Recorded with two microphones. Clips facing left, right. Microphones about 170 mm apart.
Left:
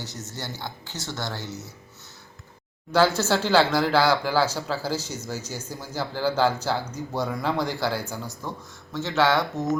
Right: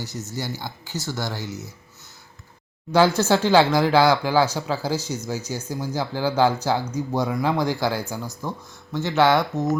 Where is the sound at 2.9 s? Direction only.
15° right (ahead or behind).